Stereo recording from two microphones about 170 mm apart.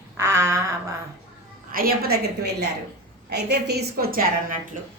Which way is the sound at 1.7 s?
60° right (ahead or behind).